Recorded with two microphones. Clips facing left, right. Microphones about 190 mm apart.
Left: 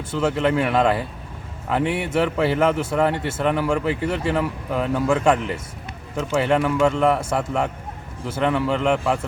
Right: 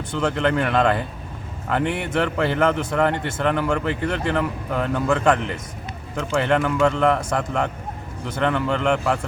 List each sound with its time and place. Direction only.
0.1 s a man's voice: 5° left (ahead or behind)